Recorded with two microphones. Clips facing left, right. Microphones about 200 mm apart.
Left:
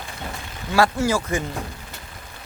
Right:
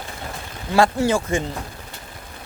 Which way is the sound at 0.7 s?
25° right (ahead or behind).